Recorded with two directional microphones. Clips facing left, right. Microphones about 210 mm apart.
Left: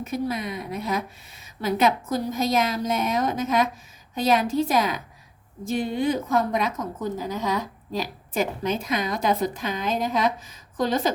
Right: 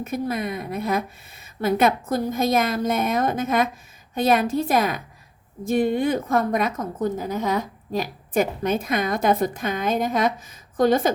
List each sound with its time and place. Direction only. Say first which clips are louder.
0.0 s a woman's voice: right 2 dB; 55° right (ahead or behind)